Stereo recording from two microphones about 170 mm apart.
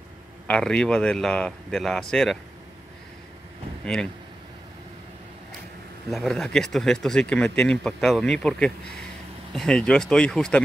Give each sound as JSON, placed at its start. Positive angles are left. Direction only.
{"t": 0.5, "sound": "speech", "side_deg": 5}
{"t": 3.8, "sound": "speech", "side_deg": 5}
{"t": 6.0, "sound": "speech", "side_deg": 0}